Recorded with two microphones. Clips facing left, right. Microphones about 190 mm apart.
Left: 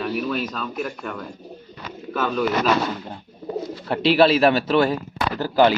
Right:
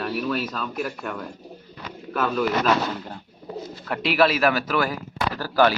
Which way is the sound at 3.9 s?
30° left (ahead or behind).